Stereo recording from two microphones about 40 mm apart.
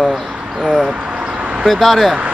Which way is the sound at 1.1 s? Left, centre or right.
Right.